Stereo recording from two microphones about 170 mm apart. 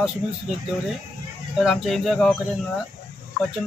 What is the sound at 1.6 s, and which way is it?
Speech, centre (ahead or behind).